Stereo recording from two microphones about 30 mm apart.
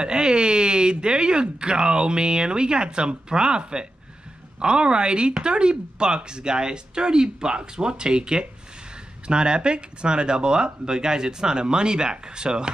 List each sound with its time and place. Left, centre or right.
0.0 s speech: right